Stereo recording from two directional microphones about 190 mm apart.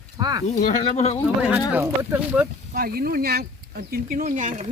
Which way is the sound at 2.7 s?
55° right (ahead or behind).